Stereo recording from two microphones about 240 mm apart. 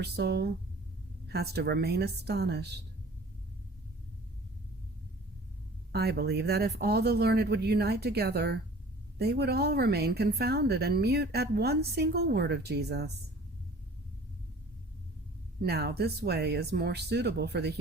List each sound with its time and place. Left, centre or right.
0.0 s speech: right
5.9 s a woman's voice: right
15.6 s speech: right